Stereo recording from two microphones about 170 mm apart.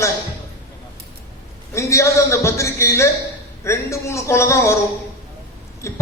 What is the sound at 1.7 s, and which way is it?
A man's voice, 15° left (ahead or behind).